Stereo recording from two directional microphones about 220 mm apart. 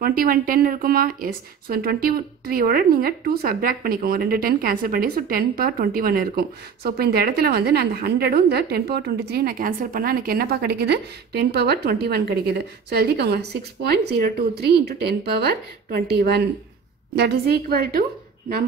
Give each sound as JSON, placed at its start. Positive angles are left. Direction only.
{"t": 0.0, "sound": "speech", "side_deg": -40}